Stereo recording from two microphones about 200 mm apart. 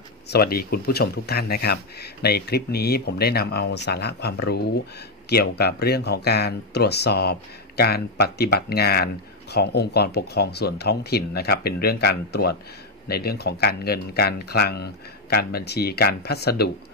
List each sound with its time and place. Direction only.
0.3 s speech: 50° left (ahead or behind)